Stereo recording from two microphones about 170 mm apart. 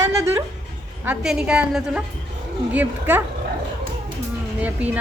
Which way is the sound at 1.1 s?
5° right (ahead or behind).